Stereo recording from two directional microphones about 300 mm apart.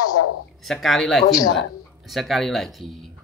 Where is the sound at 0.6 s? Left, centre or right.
Centre.